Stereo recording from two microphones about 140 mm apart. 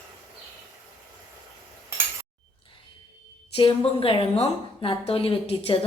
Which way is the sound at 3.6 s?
40° left (ahead or behind).